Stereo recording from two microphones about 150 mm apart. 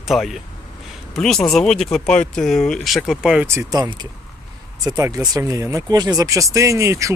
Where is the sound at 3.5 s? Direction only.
20° right (ahead or behind).